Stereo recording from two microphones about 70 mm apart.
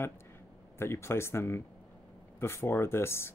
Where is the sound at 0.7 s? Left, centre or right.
Left.